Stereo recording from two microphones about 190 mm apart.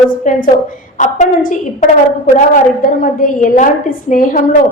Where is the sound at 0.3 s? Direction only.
40° left (ahead or behind).